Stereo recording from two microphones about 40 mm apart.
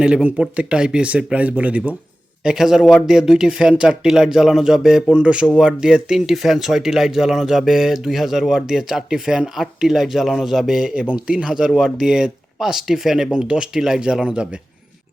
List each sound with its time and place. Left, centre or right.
0.3 s speech: right
1.1 s speech: right
2.4 s speech: centre
4.0 s speech: centre
5.0 s speech: right; by 10.9 s centre
11.1 s speech: right
11.8 s speech: centre
13.3 s speech: right